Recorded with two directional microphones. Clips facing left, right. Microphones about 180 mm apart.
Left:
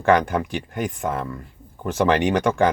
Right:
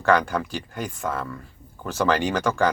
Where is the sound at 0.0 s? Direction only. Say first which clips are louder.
Left 3 dB; 20° left (ahead or behind).